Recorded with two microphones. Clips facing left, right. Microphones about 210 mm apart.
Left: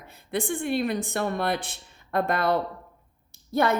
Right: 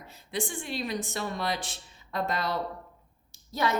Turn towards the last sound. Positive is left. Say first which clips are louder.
# left 6 dB
turn(degrees=55)  # may be behind; listen again after turning